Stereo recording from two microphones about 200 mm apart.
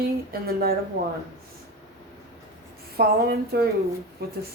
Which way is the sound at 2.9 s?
50° right (ahead or behind).